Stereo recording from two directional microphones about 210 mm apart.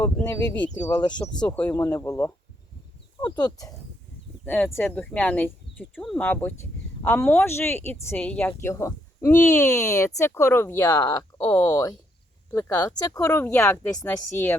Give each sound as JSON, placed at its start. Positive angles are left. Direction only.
{"t": 0.0, "sound": "speech", "side_deg": 10}
{"t": 4.4, "sound": "speech", "side_deg": 10}